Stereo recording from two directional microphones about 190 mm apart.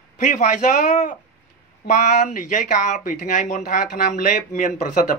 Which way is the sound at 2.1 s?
40° left (ahead or behind).